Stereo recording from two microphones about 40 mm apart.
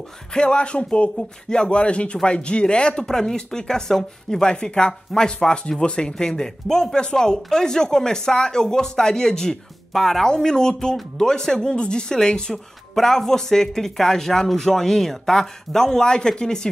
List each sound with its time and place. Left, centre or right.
0.3 s speech: left
3.1 s speech: centre
10.3 s speech: centre
12.9 s speech: centre